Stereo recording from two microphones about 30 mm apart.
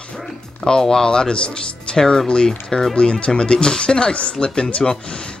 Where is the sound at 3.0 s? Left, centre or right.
Left.